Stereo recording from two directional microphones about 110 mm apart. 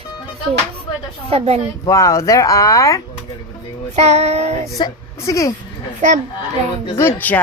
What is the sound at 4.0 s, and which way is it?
Child singing, 85° right.